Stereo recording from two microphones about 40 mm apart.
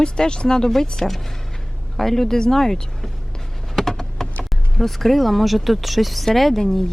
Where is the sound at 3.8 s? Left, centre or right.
Centre.